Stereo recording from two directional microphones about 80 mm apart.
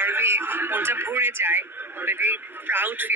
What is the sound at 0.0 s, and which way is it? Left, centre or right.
A man's voice, right.